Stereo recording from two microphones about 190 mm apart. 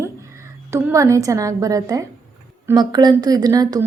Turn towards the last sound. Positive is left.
turn(degrees=-20)  # may be behind; listen again after turning